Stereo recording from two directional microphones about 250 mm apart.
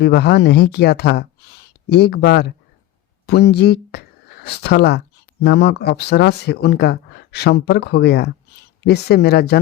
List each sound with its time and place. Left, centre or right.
0.0 s speech: left